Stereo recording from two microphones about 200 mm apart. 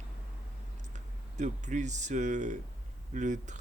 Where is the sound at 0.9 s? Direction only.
35° right (ahead or behind).